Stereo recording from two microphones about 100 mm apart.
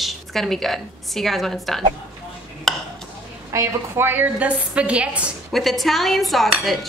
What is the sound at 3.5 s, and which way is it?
A woman's voice, 25° right (ahead or behind).